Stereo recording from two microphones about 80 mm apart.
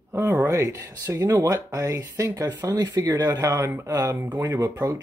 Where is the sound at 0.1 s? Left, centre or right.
Right.